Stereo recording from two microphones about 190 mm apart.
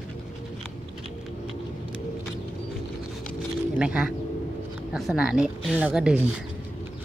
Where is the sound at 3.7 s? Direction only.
5° right (ahead or behind).